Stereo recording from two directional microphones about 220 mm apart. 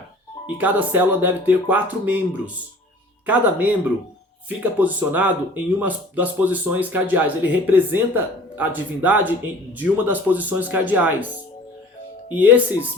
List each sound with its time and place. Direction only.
0.4 s speech: 5° right (ahead or behind)
12.3 s speech: 5° right (ahead or behind)